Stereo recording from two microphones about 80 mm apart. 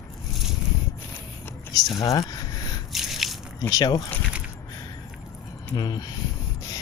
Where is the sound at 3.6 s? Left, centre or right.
Left.